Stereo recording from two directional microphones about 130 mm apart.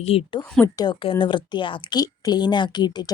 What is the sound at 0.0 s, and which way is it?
Speech, 50° left (ahead or behind).